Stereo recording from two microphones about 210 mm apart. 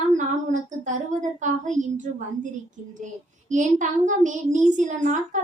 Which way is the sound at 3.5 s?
35° right (ahead or behind).